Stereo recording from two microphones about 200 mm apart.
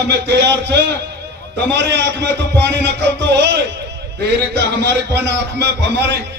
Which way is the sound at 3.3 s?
60° right (ahead or behind).